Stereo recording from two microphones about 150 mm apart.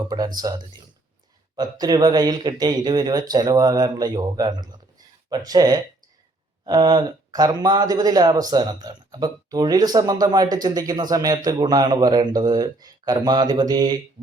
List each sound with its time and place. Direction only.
0.1 s speech: 25° right (ahead or behind)